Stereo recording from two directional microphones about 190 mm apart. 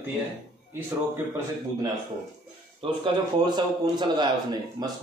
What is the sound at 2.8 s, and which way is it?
Speech, 30° right (ahead or behind).